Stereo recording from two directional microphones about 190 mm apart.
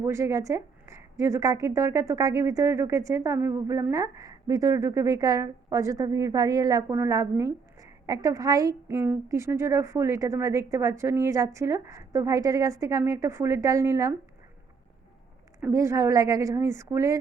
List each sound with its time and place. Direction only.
0.0 s a woman's voice: 15° right (ahead or behind)
15.6 s a woman's voice: 15° right (ahead or behind)